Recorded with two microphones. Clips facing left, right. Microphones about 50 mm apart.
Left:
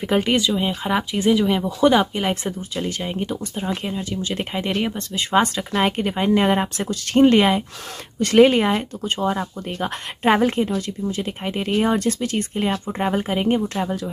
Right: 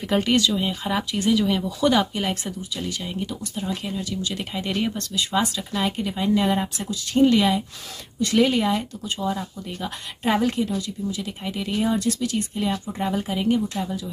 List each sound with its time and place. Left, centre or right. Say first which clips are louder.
0.0 s speech: left 1 dB; centre
2.7 s speech: left 4 dB; left
5.2 s speech: left 5 dB; left
13.7 s speech: left 4 dB; left